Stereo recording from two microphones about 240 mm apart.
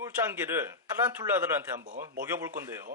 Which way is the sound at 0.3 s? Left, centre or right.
Centre.